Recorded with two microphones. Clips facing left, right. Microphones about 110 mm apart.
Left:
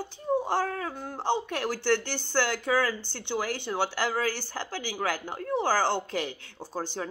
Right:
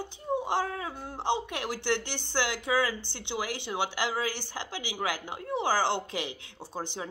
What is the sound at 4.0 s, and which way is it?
Speech, 45° left (ahead or behind).